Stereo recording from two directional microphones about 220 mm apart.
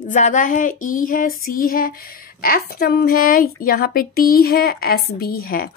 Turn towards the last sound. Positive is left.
turn(degrees=40)  # may be behind; listen again after turning